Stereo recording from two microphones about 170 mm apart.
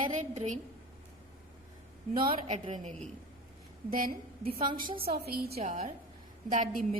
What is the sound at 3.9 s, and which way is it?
Speech, 55° right (ahead or behind).